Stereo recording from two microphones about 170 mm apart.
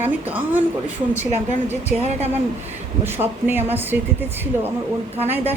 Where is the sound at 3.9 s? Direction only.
65° right (ahead or behind).